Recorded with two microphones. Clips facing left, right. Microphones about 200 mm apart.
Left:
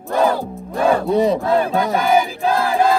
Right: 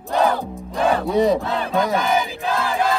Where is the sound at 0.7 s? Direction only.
50° left (ahead or behind).